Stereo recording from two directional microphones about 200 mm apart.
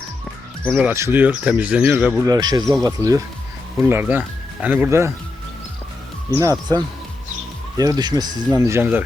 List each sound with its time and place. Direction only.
0.7 s speech: 10° right (ahead or behind)
2.2 s speech: 20° right (ahead or behind)
6.3 s speech: 20° right (ahead or behind)